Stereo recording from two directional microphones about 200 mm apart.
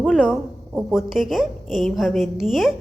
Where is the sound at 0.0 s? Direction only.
Centre (ahead or behind).